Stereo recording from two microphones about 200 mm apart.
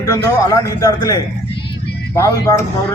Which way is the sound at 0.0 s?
15° left (ahead or behind).